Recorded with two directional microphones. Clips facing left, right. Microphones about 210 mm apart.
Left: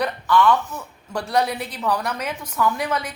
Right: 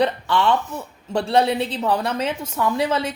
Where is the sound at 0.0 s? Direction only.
25° right (ahead or behind).